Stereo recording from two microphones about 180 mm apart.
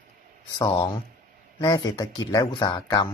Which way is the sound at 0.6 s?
25° left (ahead or behind).